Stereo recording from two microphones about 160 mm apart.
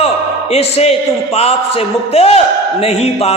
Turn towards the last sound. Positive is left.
turn(degrees=40)  # may be behind; listen again after turning